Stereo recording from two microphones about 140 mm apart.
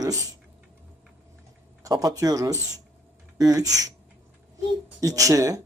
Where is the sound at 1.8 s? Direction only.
25° right (ahead or behind).